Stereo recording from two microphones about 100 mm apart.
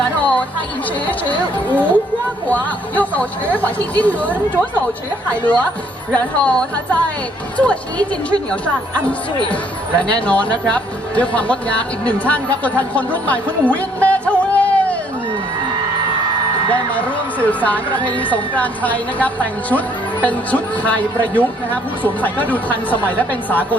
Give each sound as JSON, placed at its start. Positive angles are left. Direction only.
{"t": 0.2, "sound": "chatter", "side_deg": 15}
{"t": 1.7, "sound": "speech", "side_deg": 15}
{"t": 6.1, "sound": "speech", "side_deg": 10}
{"t": 17.4, "sound": "speech", "side_deg": 15}